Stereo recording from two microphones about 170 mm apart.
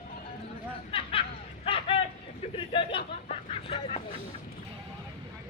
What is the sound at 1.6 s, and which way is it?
Vehicle, 35° left (ahead or behind).